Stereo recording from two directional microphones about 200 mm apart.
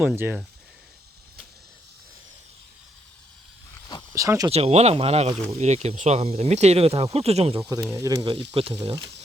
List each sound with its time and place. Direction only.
0.0 s speech: 10° right (ahead or behind)
4.1 s speech: 15° right (ahead or behind)
4.5 s speech: 30° right (ahead or behind)